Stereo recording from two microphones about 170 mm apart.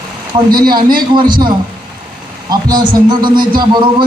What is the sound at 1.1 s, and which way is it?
Speech, 25° right (ahead or behind).